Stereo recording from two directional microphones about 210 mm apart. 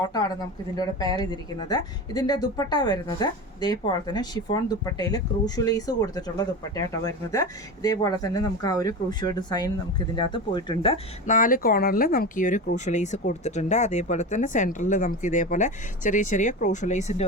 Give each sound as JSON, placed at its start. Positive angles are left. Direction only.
{"t": 0.0, "sound": "speech", "side_deg": 20}